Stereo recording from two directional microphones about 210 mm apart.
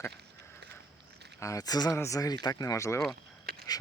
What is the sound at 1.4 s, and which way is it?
Speech, 15° left (ahead or behind).